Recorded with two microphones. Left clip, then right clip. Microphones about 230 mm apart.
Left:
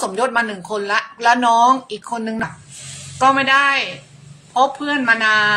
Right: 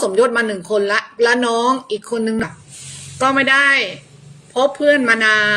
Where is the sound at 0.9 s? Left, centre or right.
Left.